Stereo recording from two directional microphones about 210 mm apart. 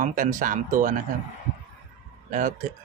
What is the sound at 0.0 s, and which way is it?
Speech, 40° right (ahead or behind).